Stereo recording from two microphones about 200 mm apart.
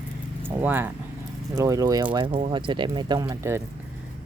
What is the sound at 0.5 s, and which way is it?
Speech, 10° right (ahead or behind).